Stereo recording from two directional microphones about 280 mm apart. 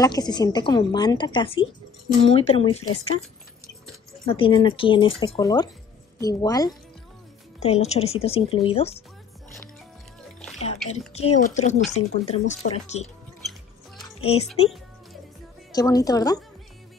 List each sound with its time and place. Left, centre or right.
0.0 s a woman's voice: centre
4.3 s a woman's voice: centre
10.6 s speech: left
13.4 s music: centre
15.7 s a woman's voice: centre